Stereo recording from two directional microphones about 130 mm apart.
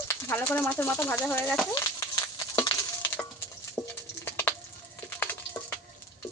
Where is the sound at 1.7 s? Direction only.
25° left (ahead or behind).